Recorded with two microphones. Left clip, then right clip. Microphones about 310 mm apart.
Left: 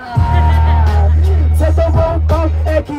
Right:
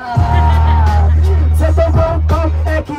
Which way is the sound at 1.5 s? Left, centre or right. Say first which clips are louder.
Right 1 dB; centre.